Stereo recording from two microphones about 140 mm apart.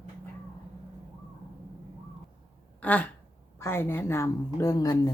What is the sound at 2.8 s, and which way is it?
Speech, 10° left (ahead or behind).